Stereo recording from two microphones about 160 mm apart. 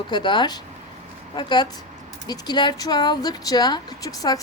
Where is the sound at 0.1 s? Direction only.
30° left (ahead or behind).